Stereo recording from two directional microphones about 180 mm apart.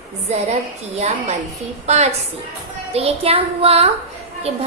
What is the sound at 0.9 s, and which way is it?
A woman's voice, 40° right (ahead or behind).